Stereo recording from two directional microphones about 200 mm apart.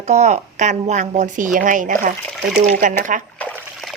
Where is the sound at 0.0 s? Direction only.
35° right (ahead or behind).